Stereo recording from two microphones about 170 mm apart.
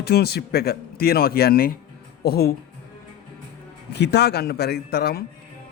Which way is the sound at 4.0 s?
80° left.